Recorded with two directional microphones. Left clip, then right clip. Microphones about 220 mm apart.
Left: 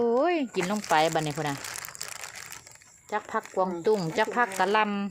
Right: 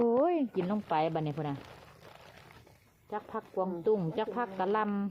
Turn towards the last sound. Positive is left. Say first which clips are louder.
# left 7 dB
turn(degrees=15)  # may be behind; listen again after turning